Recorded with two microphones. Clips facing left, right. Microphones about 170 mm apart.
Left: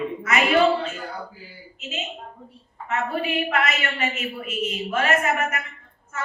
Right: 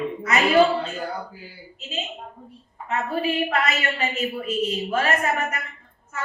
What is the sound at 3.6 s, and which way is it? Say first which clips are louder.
Speech: right 1 dB; 35° right (ahead or behind).